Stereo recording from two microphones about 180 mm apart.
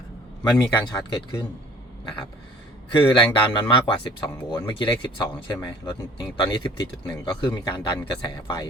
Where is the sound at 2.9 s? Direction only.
25° left (ahead or behind).